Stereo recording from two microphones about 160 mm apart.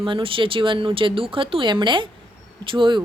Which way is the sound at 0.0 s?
35° right (ahead or behind).